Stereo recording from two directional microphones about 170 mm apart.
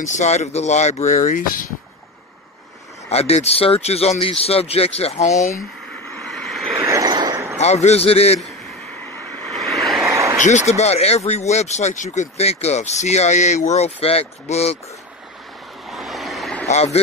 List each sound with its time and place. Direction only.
0.0 s speech: 45° left (ahead or behind)
3.1 s speech: 35° left (ahead or behind)
6.3 s vehicle: centre (ahead or behind)
6.8 s vehicle: 20° right (ahead or behind)
7.5 s speech: 40° left (ahead or behind)
9.4 s vehicle: centre (ahead or behind)
10.0 s a sound: 15° right (ahead or behind)
10.4 s speech: 45° left (ahead or behind)
15.9 s vehicle: centre (ahead or behind)
16.6 s speech: 40° left (ahead or behind)